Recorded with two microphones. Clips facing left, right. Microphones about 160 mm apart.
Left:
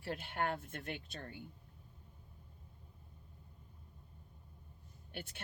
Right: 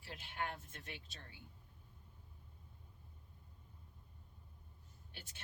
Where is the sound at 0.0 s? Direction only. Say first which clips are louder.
Left 7 dB; 60° left (ahead or behind).